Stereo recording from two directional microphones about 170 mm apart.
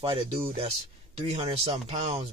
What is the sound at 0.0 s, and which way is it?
Speech, 30° right (ahead or behind).